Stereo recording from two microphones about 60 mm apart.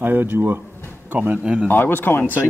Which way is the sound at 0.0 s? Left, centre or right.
Right.